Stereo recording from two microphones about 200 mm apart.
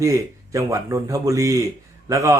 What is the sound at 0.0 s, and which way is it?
A man's voice, 15° right (ahead or behind).